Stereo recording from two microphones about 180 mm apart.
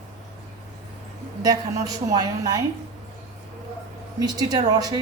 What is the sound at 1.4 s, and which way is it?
A woman's voice, 20° right (ahead or behind).